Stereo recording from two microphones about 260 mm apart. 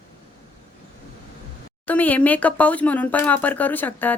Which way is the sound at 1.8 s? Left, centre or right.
Centre.